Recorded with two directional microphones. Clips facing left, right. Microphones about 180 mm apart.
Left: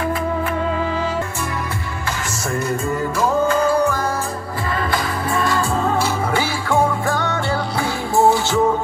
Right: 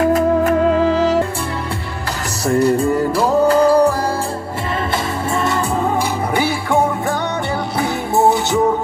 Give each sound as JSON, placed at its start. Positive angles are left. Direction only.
{"t": 0.0, "sound": "music", "side_deg": -40}
{"t": 2.4, "sound": "music", "side_deg": -35}
{"t": 4.9, "sound": "music", "side_deg": -25}